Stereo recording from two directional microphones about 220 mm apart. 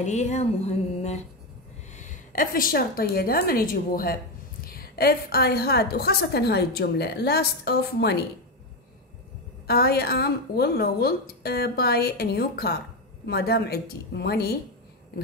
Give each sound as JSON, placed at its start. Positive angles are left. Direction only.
{"t": 0.0, "sound": "a woman's voice", "side_deg": 30}
{"t": 9.7, "sound": "a woman's voice", "side_deg": 45}